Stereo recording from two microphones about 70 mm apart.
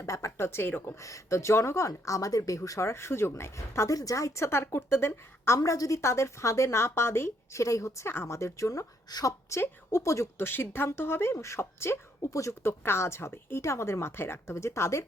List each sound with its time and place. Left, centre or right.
0.0 s a woman's voice: left
1.0 s a woman's voice: left
2.0 s a woman's voice: left
3.8 s a woman's voice: left
5.5 s a woman's voice: left
9.0 s a woman's voice: left
9.5 s a woman's voice: left
10.4 s a woman's voice: left
12.6 s a woman's voice: left